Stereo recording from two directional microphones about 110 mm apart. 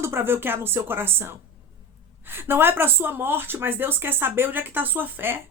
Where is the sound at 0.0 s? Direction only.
20° right (ahead or behind).